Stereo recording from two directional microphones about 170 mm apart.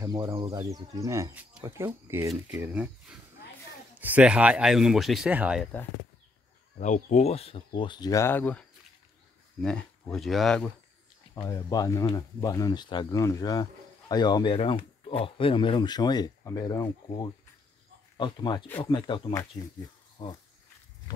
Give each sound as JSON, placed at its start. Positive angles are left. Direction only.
{"t": 0.0, "sound": "speech", "side_deg": -20}
{"t": 6.8, "sound": "speech", "side_deg": 45}
{"t": 11.4, "sound": "speech", "side_deg": 20}